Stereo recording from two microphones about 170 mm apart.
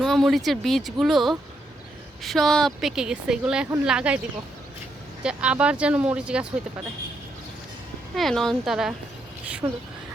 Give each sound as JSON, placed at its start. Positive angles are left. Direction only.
{"t": 0.0, "sound": "a woman's voice", "side_deg": 0}
{"t": 5.2, "sound": "speech", "side_deg": -5}
{"t": 8.1, "sound": "a woman's voice", "side_deg": 0}
{"t": 9.6, "sound": "speech", "side_deg": -25}